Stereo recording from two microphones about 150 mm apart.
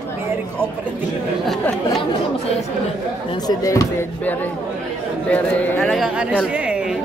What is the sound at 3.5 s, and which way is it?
Speech, 20° left (ahead or behind).